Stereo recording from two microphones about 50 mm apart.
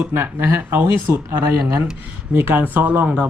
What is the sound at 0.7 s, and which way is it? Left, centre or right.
Speech, right.